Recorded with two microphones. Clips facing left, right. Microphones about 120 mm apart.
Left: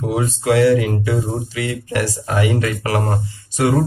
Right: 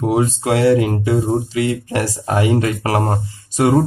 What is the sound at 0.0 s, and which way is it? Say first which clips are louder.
Speech: right 3 dB; 45° right (ahead or behind).